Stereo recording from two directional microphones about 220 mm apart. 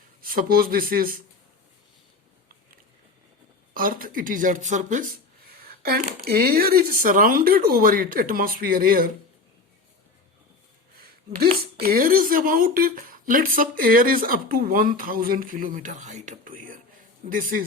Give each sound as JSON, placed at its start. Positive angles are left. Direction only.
{"t": 0.2, "sound": "a woman's voice", "side_deg": -40}
{"t": 3.8, "sound": "a woman's voice", "side_deg": -40}
{"t": 10.9, "sound": "a sound", "side_deg": -45}
{"t": 11.8, "sound": "a woman's voice", "side_deg": -40}